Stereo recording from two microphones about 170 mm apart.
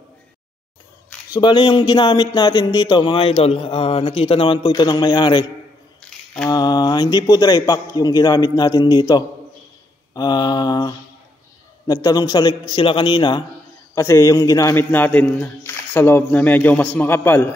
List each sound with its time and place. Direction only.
1.3 s speech: 25° left (ahead or behind)
5.9 s a sound: 5° left (ahead or behind)
6.5 s a man's voice: 25° left (ahead or behind)